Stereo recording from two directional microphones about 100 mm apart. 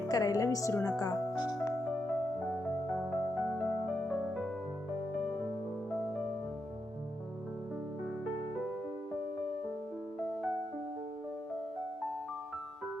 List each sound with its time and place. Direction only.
0.1 s speech: 35° left (ahead or behind)
3.0 s music: centre (ahead or behind)